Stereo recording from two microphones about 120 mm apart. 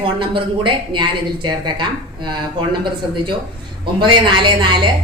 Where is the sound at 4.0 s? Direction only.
40° right (ahead or behind).